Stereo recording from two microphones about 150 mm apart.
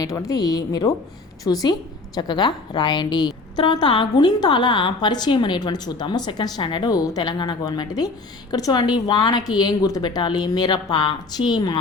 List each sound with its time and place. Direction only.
0.0 s a woman's voice: 20° left (ahead or behind)